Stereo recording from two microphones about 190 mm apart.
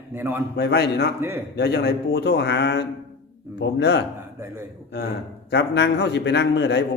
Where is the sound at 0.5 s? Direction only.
60° left (ahead or behind).